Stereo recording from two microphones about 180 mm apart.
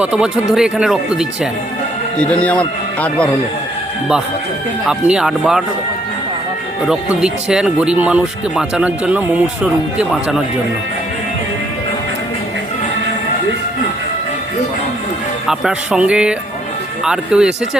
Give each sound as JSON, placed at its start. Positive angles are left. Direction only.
{"t": 0.0, "sound": "speech", "side_deg": -5}
{"t": 2.1, "sound": "speech", "side_deg": 5}
{"t": 4.9, "sound": "speech", "side_deg": -5}
{"t": 6.8, "sound": "speech", "side_deg": -5}
{"t": 15.4, "sound": "speech", "side_deg": -5}